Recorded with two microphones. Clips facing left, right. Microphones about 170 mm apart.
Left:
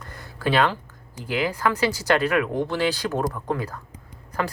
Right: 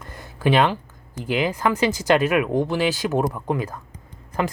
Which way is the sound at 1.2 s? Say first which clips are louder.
Right 2 dB; 20° right (ahead or behind).